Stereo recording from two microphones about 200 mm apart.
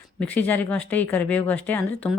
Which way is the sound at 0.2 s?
10° left (ahead or behind).